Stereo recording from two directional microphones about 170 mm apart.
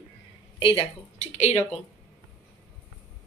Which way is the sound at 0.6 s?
30° left (ahead or behind).